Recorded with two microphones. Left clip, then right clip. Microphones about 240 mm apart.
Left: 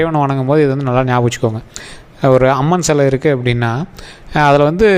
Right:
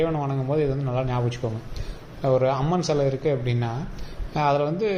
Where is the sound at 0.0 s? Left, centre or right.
Left.